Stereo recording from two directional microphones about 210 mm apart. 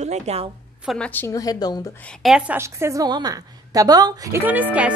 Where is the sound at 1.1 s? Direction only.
15° left (ahead or behind).